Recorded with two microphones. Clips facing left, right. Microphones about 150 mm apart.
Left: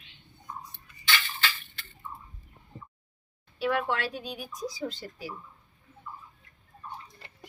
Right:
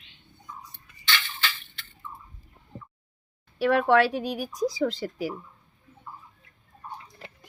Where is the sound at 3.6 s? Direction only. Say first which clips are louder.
Right 8 dB; 65° right (ahead or behind); by 5.3 s 90° right.